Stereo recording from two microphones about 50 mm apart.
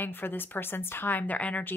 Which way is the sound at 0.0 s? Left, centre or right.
Left.